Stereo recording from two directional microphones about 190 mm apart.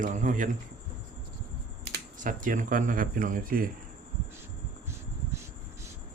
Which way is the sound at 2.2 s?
45° right (ahead or behind).